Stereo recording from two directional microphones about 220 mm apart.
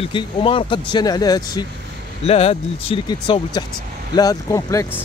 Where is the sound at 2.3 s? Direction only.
25° left (ahead or behind).